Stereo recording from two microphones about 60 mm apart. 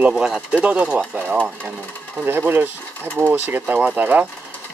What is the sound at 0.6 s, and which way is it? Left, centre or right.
Speech, right.